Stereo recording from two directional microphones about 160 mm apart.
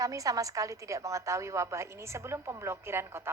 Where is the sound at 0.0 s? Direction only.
20° right (ahead or behind).